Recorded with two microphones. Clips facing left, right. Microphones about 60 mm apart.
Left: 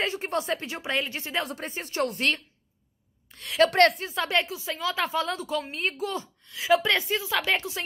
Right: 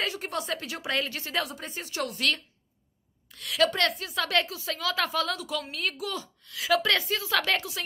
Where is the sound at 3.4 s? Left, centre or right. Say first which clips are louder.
Left 5 dB; left.